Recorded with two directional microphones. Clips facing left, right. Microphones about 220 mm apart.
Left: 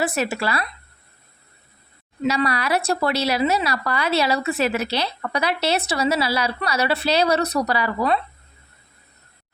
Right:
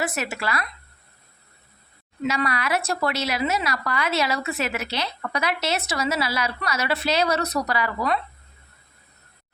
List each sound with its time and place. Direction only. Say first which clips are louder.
0.0 s a woman's voice: left 5 dB; 30° left (ahead or behind)
2.2 s a woman's voice: left 3 dB; 35° left (ahead or behind)